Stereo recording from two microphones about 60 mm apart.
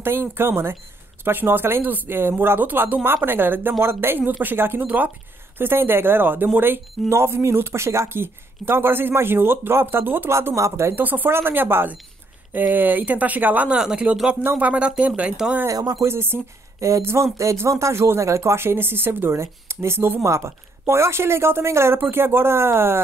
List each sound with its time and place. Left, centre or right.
0.0 s speech: right
5.6 s speech: right
10.5 s speech: right
11.0 s speech: right
13.7 s speech: centre
15.7 s speech: right
16.0 s speech: right